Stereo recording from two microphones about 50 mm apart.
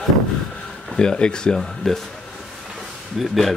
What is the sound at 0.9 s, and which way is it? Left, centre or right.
Speech, centre.